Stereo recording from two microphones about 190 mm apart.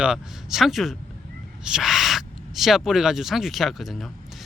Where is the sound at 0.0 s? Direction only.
5° right (ahead or behind).